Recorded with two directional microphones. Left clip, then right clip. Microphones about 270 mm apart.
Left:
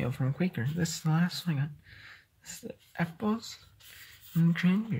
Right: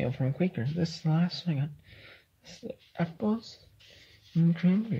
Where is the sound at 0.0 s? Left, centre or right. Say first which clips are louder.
Right 3 dB; centre.